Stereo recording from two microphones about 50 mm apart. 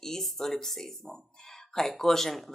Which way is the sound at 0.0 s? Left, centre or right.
Centre.